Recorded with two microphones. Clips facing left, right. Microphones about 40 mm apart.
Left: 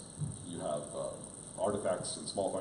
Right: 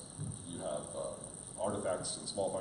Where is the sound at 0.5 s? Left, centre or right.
Centre.